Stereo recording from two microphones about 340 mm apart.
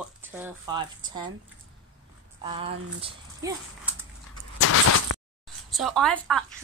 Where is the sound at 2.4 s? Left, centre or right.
Centre.